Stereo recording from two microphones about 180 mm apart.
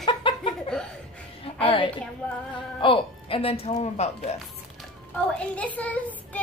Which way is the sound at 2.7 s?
30° left (ahead or behind).